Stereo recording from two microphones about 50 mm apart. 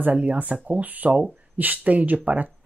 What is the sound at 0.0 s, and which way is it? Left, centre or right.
Speech, right.